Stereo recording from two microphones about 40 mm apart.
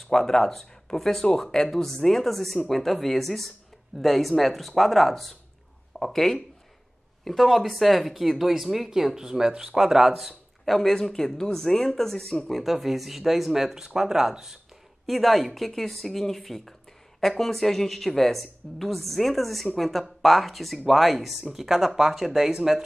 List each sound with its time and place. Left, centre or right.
0.0 s speech: centre
9.8 s speech: centre
15.0 s speech: centre